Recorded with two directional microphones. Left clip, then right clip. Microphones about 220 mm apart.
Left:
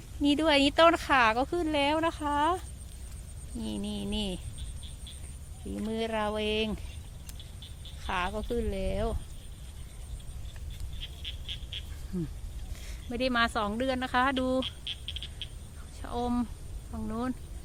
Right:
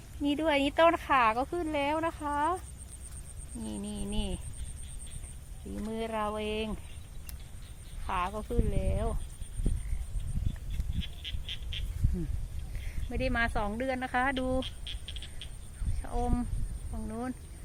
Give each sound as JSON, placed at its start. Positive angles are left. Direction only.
{"t": 0.2, "sound": "speech", "side_deg": 15}
{"t": 3.6, "sound": "speech", "side_deg": 15}
{"t": 5.9, "sound": "speech", "side_deg": 10}
{"t": 8.0, "sound": "speech", "side_deg": 10}
{"t": 11.0, "sound": "frog", "side_deg": -35}
{"t": 13.1, "sound": "speech", "side_deg": 15}
{"t": 14.6, "sound": "a sound", "side_deg": -45}
{"t": 16.1, "sound": "speech", "side_deg": 10}